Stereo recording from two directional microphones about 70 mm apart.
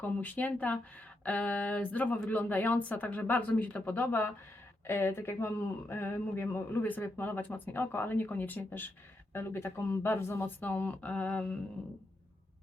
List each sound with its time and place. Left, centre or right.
0.0 s speech: left